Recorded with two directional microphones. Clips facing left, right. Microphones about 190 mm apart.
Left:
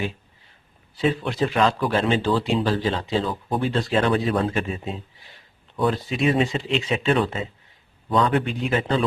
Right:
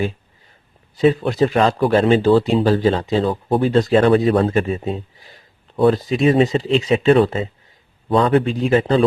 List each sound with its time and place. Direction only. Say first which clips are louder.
0.9 s speech: right 7 dB; 40° right (ahead or behind)
5.7 s speech: right 8 dB; 35° right (ahead or behind)